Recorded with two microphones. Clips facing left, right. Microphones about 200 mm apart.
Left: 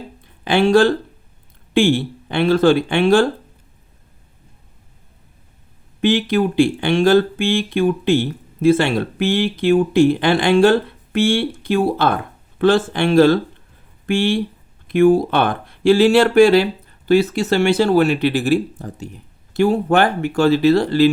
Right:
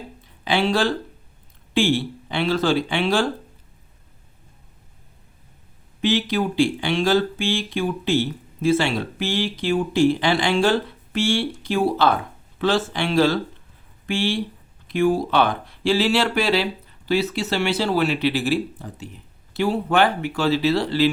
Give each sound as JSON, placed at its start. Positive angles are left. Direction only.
{"t": 0.4, "sound": "speech", "side_deg": 50}
{"t": 6.0, "sound": "speech", "side_deg": 55}